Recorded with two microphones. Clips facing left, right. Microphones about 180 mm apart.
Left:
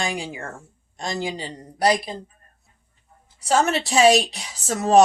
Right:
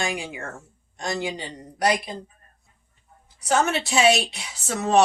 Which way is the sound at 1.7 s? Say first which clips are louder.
Left 3 dB; 30° left (ahead or behind).